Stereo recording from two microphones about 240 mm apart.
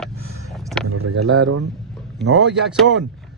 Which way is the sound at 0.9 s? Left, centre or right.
Right.